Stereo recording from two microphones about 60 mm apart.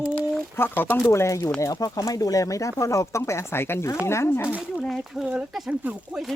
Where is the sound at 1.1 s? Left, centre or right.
Left.